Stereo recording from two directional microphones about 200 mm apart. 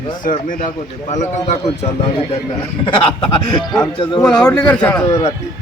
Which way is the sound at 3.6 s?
Centre (ahead or behind).